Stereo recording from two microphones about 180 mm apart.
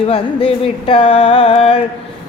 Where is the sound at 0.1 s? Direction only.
30° left (ahead or behind).